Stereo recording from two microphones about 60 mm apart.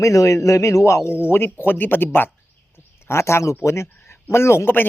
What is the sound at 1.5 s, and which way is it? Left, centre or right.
Speech, left.